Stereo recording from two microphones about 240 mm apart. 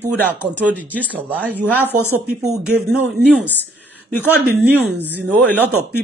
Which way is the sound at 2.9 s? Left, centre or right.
Right.